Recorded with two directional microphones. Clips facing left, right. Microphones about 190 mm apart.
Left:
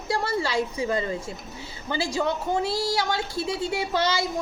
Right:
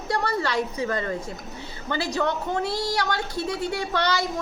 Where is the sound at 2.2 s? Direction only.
10° left (ahead or behind).